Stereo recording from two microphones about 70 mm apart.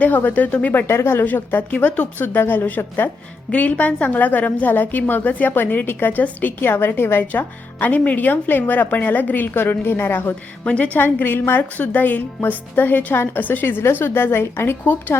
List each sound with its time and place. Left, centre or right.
0.0 s a woman's voice: left
1.2 s a woman's voice: left
2.1 s a woman's voice: left